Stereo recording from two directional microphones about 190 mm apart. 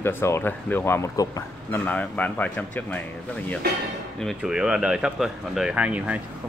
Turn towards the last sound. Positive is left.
turn(degrees=-5)  # may be behind; listen again after turning